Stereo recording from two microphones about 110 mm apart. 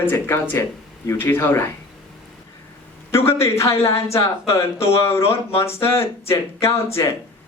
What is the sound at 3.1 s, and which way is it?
A man's voice, 25° left (ahead or behind).